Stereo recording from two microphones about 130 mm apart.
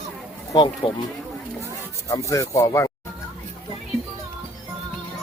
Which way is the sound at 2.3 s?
25° left (ahead or behind).